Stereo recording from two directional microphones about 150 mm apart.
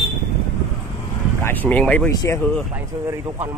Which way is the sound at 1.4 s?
10° left (ahead or behind).